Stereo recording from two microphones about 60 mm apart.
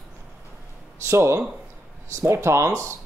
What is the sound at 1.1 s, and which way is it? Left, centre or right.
Speech, right.